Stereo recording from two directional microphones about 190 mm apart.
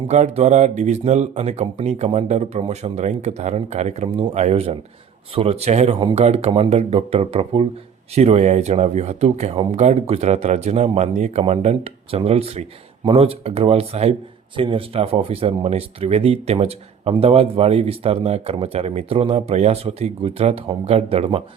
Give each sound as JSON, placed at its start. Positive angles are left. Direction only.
{"t": 0.1, "sound": "a man's voice", "side_deg": -40}